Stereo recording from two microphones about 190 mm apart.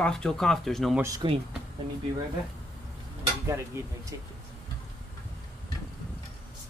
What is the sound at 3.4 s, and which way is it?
Speech, 15° right (ahead or behind).